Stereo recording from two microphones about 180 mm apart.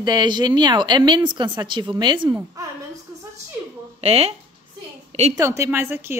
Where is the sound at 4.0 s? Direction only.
35° right (ahead or behind).